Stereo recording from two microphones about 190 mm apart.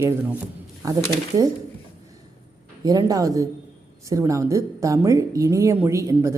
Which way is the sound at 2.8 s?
20° right (ahead or behind).